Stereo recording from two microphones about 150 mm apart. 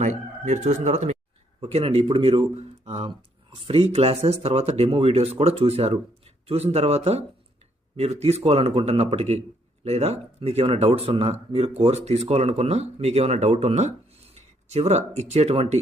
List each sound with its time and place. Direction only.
0.0 s speech: 50° right (ahead or behind)